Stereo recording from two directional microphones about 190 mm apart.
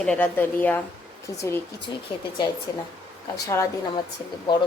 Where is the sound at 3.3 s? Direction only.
15° left (ahead or behind).